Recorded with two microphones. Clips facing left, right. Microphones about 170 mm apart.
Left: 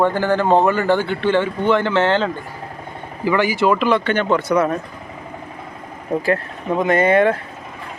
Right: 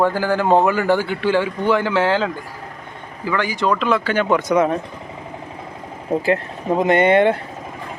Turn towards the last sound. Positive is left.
turn(degrees=-30)  # may be behind; listen again after turning